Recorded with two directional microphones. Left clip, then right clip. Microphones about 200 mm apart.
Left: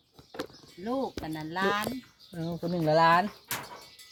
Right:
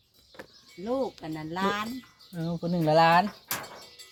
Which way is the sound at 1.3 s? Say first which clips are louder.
Even; 25° left (ahead or behind).